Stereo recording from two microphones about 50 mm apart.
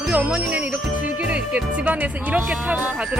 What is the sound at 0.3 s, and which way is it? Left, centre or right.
Speech, right.